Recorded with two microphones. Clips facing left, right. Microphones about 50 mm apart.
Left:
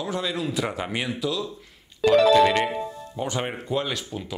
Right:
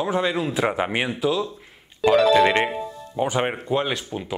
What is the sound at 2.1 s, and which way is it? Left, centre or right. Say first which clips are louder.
Music: even; centre.